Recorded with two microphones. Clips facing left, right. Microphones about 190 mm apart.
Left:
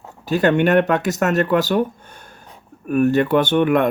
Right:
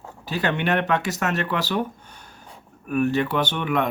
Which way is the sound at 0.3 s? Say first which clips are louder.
Left 8 dB; 45° left (ahead or behind).